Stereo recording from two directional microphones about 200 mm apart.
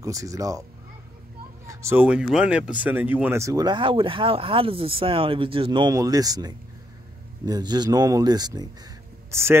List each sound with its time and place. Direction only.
0.0 s speech: 15° right (ahead or behind)
1.7 s speech: 15° right (ahead or behind)